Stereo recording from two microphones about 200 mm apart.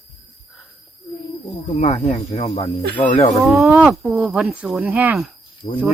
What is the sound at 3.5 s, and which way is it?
Speech, centre (ahead or behind).